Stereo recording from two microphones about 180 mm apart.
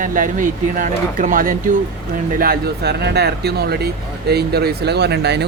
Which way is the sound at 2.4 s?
60° right (ahead or behind).